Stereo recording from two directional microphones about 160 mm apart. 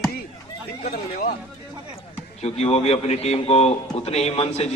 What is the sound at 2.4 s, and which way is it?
A man's voice, 40° left (ahead or behind).